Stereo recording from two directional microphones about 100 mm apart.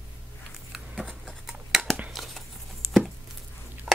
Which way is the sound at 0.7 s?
Centre (ahead or behind).